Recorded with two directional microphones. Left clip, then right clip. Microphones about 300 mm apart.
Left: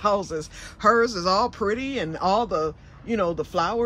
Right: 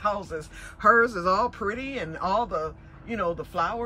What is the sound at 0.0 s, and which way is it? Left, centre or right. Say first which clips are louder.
Speech: left 5 dB; centre.